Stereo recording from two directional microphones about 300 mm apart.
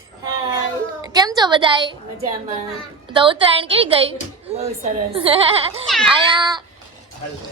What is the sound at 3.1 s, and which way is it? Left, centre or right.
A child's voice, centre.